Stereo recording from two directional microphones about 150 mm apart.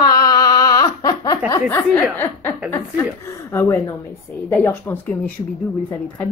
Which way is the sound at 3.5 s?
15° left (ahead or behind).